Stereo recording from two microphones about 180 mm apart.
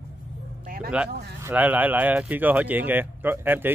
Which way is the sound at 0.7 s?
55° right (ahead or behind).